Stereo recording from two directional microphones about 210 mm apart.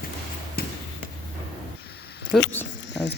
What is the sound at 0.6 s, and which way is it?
Basketball bounce, 45° left (ahead or behind).